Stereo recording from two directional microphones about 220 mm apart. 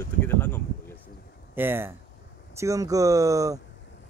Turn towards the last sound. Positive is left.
turn(degrees=-15)  # may be behind; listen again after turning